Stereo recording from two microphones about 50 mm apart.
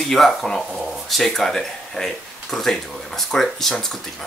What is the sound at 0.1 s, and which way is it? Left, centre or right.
Speech, centre.